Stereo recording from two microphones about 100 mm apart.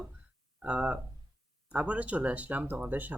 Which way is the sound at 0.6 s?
10° right (ahead or behind).